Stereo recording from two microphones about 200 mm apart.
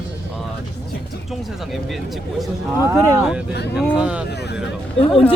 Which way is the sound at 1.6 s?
Centre (ahead or behind).